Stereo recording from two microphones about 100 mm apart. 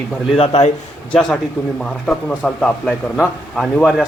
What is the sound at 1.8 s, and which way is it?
Speech, 10° left (ahead or behind).